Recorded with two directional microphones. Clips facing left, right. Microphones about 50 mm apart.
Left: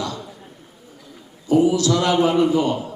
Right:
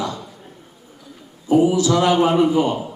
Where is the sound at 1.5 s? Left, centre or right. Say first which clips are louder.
Right 1 dB; right.